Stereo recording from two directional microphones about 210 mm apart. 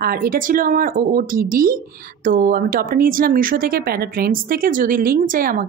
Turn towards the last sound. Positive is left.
turn(degrees=-45)  # may be behind; listen again after turning